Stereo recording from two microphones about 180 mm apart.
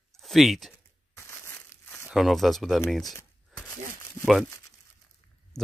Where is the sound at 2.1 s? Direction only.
Centre (ahead or behind).